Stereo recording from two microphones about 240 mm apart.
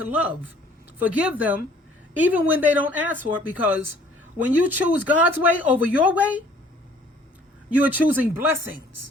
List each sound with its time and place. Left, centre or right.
0.1 s speech: centre
7.7 s speech: centre